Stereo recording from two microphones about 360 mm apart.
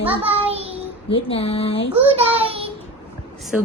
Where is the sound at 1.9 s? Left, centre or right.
Centre.